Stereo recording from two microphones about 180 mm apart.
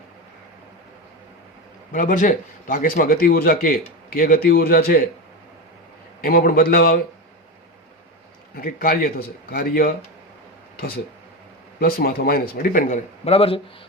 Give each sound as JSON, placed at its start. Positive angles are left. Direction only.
{"t": 1.9, "sound": "speech", "side_deg": 45}
{"t": 6.2, "sound": "speech", "side_deg": 55}
{"t": 8.5, "sound": "speech", "side_deg": 50}
{"t": 11.8, "sound": "speech", "side_deg": 55}